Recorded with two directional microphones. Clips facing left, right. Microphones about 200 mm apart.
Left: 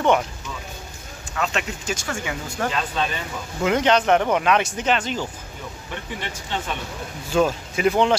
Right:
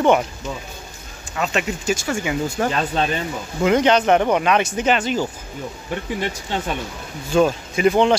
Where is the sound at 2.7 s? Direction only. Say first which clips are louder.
Right 4 dB; 40° right (ahead or behind).